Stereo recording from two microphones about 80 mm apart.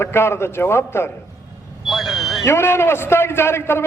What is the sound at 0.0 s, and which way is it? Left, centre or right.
A man's voice, left.